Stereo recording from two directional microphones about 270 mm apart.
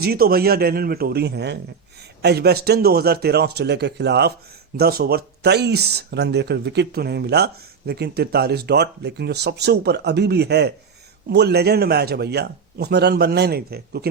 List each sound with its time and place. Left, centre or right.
0.0 s speech: right